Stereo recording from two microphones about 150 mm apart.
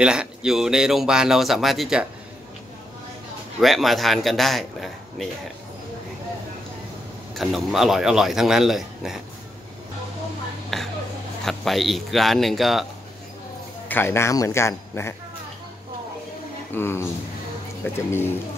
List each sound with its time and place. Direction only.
0.0 s speech: 5° right (ahead or behind)
3.6 s speech: centre (ahead or behind)
7.3 s speech: centre (ahead or behind)
10.7 s a sound: centre (ahead or behind)
11.4 s speech: centre (ahead or behind)
13.8 s a man's voice: 15° left (ahead or behind)
16.7 s a man's voice: 15° left (ahead or behind)